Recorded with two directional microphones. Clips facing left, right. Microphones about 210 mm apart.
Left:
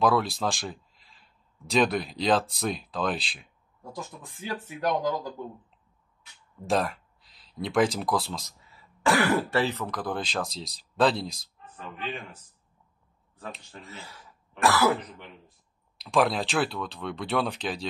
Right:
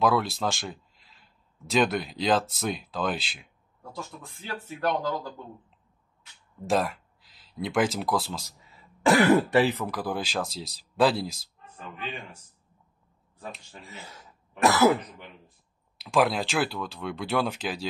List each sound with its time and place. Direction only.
0.0 s speech: centre (ahead or behind)
4.6 s speech: 15° left (ahead or behind)
6.7 s speech: centre (ahead or behind)
9.0 s speech: 20° right (ahead or behind); by 11.3 s 5° right (ahead or behind)
13.7 s speech: 15° right (ahead or behind)
14.6 s throat clearing: 20° right (ahead or behind)
16.0 s speech: centre (ahead or behind)